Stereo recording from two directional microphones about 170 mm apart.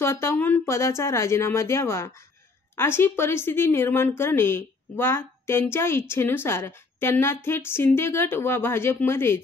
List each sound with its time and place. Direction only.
0.0 s a woman's voice: 15° left (ahead or behind)